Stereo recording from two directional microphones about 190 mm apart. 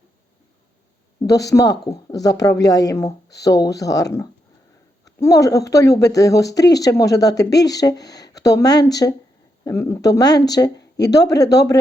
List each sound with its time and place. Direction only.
1.2 s speech: 15° left (ahead or behind)